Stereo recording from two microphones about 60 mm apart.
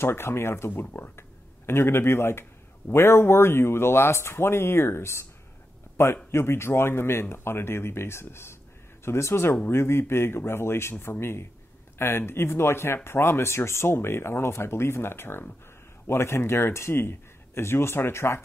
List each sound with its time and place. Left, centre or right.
0.0 s speech: left